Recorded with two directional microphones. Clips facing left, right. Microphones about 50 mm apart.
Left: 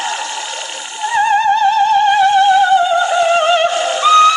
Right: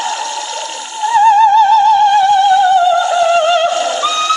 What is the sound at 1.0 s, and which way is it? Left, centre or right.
Music, left.